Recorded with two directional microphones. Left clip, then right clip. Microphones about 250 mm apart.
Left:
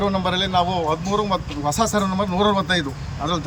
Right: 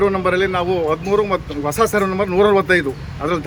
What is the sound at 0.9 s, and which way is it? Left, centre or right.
Speech, right.